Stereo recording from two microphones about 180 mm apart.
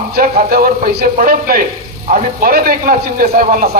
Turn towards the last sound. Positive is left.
turn(degrees=-50)  # may be behind; listen again after turning